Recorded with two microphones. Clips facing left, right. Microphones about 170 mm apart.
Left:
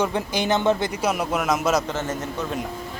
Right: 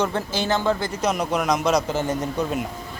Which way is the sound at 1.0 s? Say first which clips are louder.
Right 1 dB; 5° left (ahead or behind).